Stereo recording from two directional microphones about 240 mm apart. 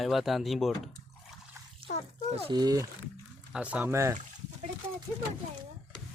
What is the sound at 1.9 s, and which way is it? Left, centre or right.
Speech, left.